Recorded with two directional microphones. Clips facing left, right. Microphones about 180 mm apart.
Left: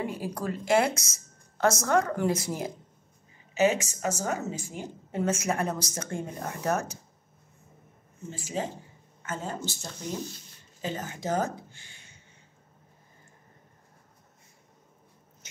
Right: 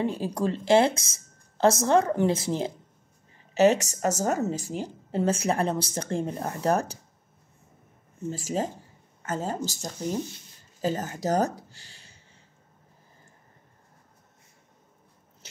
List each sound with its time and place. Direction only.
0.0 s speech: 25° right (ahead or behind)
3.5 s a woman's voice: 40° right (ahead or behind)
8.3 s a woman's voice: 40° right (ahead or behind)